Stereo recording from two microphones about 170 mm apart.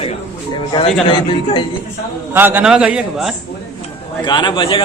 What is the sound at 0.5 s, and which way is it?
Speech, 30° left (ahead or behind).